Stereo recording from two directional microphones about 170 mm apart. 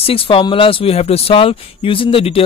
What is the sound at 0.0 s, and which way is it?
Speech, 35° left (ahead or behind).